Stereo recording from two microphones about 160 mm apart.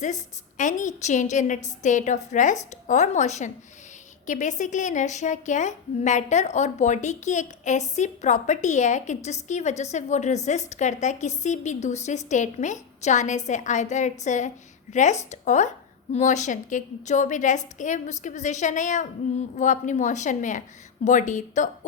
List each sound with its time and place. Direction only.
0.0 s a woman's voice: 50° left (ahead or behind)